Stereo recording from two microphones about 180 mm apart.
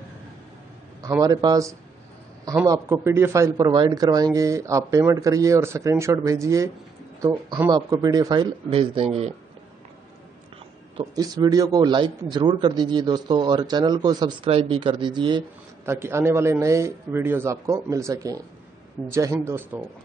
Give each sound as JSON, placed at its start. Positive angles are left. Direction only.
{"t": 1.0, "sound": "a man's voice", "side_deg": -20}
{"t": 11.0, "sound": "speech", "side_deg": -20}
{"t": 15.8, "sound": "a man's voice", "side_deg": -15}